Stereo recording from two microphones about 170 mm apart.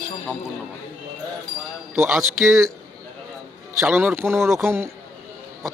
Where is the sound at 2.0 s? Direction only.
15° right (ahead or behind).